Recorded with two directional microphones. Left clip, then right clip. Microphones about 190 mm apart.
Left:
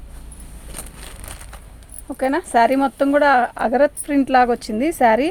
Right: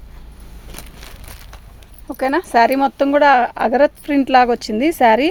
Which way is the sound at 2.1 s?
45° right (ahead or behind).